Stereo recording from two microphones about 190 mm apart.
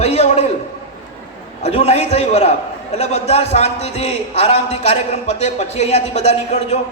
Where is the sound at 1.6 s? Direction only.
35° left (ahead or behind).